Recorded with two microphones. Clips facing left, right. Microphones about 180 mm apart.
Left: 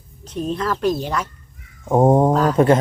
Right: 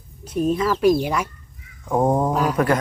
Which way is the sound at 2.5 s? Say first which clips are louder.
Left 7 dB; 25° left (ahead or behind).